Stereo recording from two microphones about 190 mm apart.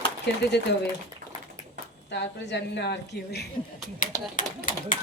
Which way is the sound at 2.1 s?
65° left (ahead or behind).